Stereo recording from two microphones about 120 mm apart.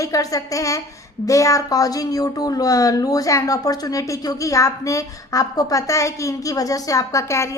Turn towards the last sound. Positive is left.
turn(degrees=25)  # may be behind; listen again after turning